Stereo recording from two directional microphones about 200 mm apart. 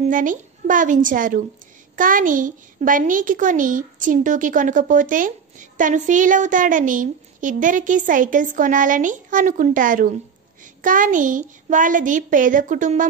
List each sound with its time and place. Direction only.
0.0 s a woman's voice: 40° right (ahead or behind)